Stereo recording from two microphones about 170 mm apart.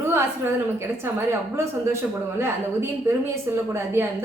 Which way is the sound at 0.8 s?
15° right (ahead or behind).